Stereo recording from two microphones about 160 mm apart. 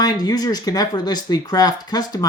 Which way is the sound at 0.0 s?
25° left (ahead or behind).